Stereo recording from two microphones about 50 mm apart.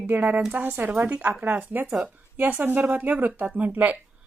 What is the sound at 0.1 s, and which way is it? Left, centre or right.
Speech, right.